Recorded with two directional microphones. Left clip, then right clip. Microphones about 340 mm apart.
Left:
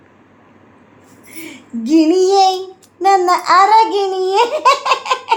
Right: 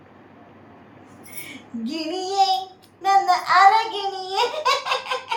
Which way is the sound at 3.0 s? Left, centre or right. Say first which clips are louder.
Left 6 dB; centre.